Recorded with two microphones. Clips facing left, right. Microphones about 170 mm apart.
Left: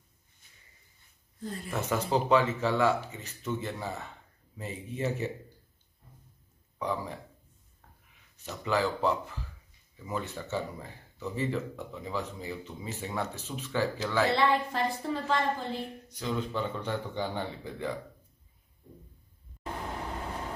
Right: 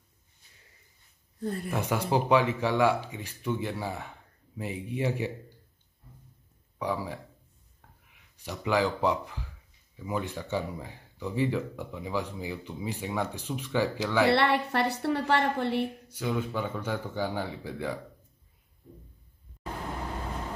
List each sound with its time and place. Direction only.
1.4 s speech: 60° right (ahead or behind)
1.7 s speech: 10° right (ahead or behind)
6.8 s speech: 10° right (ahead or behind)
8.4 s speech: 15° right (ahead or behind)
14.2 s a woman's voice: 70° right (ahead or behind)
15.8 s speech: 10° right (ahead or behind)